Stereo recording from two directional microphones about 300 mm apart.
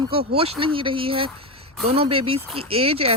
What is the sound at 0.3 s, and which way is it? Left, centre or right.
Speech, centre.